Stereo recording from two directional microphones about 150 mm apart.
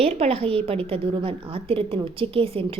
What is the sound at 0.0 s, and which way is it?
A woman's voice, 40° right (ahead or behind).